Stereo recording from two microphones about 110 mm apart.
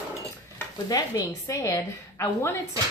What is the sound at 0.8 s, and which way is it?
A woman's voice, 35° left (ahead or behind).